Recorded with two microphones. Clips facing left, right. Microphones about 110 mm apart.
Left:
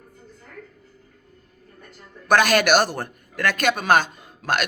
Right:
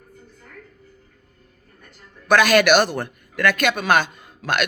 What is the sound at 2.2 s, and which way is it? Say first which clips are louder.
A man's voice: right 2 dB; 45° left (ahead or behind).